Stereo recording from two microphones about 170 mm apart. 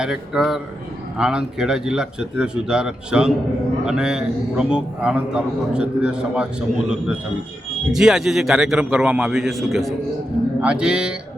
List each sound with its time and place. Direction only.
0.0 s a man's voice: 5° right (ahead or behind)